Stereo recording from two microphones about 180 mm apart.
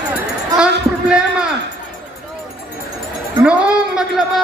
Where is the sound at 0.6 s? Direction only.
5° right (ahead or behind).